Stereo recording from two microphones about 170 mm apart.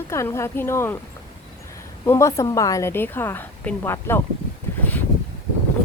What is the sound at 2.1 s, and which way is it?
Speech, 15° left (ahead or behind).